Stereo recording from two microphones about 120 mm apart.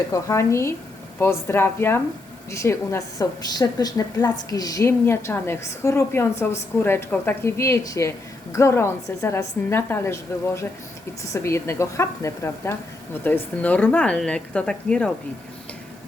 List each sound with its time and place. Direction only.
0.1 s a woman's voice: 25° left (ahead or behind)
3.5 s a woman's voice: 35° left (ahead or behind); by 15.1 s 10° left (ahead or behind)